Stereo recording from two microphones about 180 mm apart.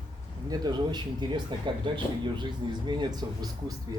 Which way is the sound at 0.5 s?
25° right (ahead or behind).